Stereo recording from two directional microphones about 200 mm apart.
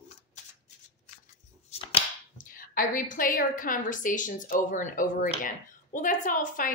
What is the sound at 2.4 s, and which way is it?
A woman's voice, 45° left (ahead or behind).